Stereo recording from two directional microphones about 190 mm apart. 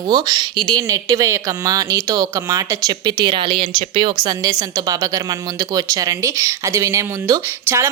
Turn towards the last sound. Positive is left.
turn(degrees=-15)  # may be behind; listen again after turning